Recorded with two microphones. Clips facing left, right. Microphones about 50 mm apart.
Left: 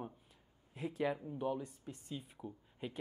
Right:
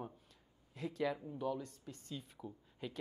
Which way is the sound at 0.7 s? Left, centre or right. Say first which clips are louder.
Left 1 dB; left.